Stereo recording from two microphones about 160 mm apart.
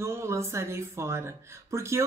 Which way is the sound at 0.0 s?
15° right (ahead or behind).